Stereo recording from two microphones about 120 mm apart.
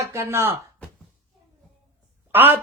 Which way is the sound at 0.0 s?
25° right (ahead or behind).